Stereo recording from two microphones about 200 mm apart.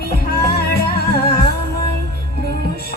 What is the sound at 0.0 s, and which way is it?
Music, 50° left (ahead or behind).